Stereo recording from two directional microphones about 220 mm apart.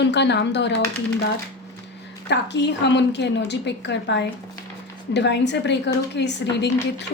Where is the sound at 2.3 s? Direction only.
50° left (ahead or behind).